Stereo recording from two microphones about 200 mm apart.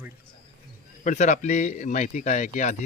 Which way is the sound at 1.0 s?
35° left (ahead or behind).